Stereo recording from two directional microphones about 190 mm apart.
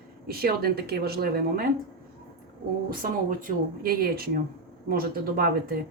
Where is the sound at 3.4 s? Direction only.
50° right (ahead or behind).